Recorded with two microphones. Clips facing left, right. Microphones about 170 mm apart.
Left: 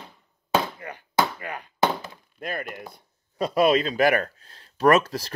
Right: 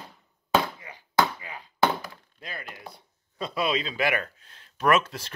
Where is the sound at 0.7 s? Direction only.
60° left (ahead or behind).